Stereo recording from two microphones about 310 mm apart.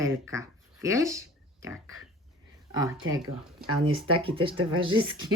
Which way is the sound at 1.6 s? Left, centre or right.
Centre.